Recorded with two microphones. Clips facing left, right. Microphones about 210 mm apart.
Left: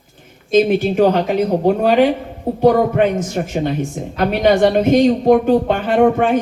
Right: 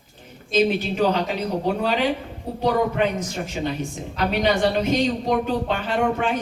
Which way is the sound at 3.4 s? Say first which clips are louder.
Left 7 dB; 50° left (ahead or behind).